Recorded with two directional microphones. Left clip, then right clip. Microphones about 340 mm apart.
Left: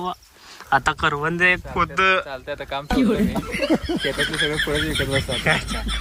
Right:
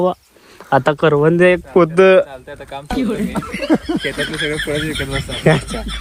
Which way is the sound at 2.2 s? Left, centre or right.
Left.